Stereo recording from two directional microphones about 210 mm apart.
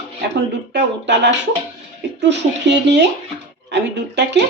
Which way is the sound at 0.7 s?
55° right (ahead or behind).